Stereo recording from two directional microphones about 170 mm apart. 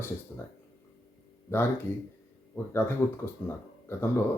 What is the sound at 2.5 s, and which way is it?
Speech, 15° left (ahead or behind).